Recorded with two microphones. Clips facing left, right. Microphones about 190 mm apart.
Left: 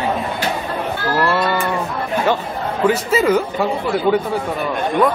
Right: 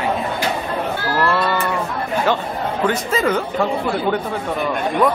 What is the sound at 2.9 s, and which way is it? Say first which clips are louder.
Speech: left 6 dB; 5° left (ahead or behind).